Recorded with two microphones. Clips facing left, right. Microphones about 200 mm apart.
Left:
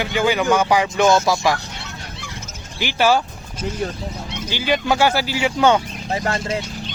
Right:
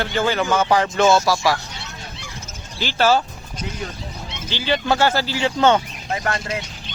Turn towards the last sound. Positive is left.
turn(degrees=25)  # may be behind; listen again after turning